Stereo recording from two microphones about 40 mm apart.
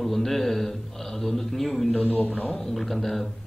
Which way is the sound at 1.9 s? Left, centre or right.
Left.